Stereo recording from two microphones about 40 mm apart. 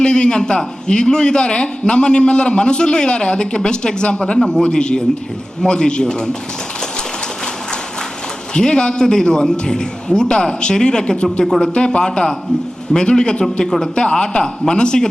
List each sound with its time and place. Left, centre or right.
0.0 s a man's voice: left
8.5 s a man's voice: left